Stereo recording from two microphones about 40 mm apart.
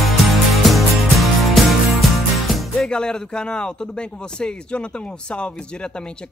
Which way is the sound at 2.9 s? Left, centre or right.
Centre.